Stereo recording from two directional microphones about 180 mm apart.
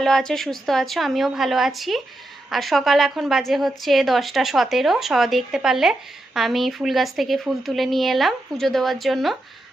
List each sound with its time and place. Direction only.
0.0 s a woman's voice: centre (ahead or behind)